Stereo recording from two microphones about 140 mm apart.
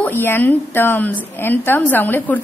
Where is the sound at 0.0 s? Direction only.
15° left (ahead or behind).